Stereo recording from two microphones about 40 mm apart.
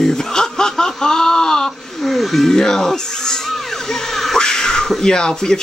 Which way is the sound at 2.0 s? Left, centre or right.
Centre.